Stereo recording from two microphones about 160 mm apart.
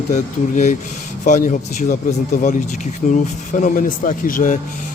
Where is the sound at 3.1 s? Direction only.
55° left (ahead or behind).